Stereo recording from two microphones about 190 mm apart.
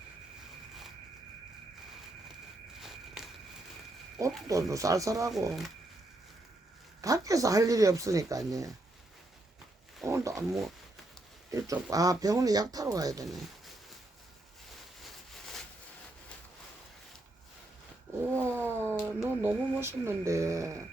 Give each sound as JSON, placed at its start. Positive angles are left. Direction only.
{"t": 2.8, "sound": "walk", "side_deg": 0}
{"t": 4.4, "sound": "speech", "side_deg": -15}
{"t": 7.0, "sound": "speech", "side_deg": -20}
{"t": 10.1, "sound": "speech", "side_deg": -15}
{"t": 10.3, "sound": "speech", "side_deg": 0}
{"t": 11.5, "sound": "speech", "side_deg": -20}
{"t": 18.3, "sound": "vehicle", "side_deg": -15}
{"t": 19.0, "sound": "speech", "side_deg": -10}